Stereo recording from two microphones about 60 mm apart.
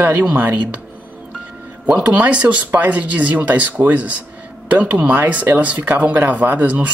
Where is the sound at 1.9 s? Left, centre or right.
Right.